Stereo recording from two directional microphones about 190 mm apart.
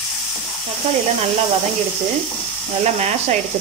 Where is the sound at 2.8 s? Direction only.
35° right (ahead or behind).